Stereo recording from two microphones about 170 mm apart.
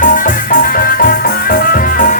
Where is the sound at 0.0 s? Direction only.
50° left (ahead or behind).